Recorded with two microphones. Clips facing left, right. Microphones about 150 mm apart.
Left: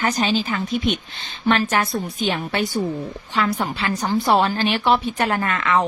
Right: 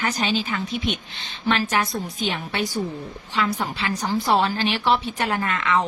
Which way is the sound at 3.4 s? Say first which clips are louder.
Left 2 dB; 55° left (ahead or behind).